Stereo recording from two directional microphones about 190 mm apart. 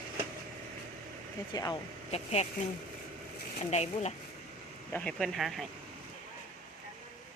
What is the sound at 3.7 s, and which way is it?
Speech, 35° left (ahead or behind).